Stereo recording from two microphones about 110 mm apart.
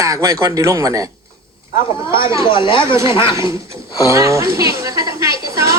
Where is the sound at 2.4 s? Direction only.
50° left (ahead or behind).